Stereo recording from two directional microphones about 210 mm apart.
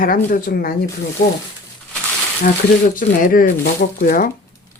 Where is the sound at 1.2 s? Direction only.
30° left (ahead or behind).